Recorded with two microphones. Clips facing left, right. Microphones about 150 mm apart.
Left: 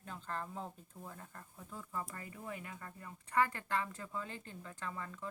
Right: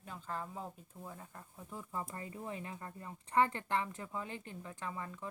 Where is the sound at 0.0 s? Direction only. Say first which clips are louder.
Even; 5° right (ahead or behind).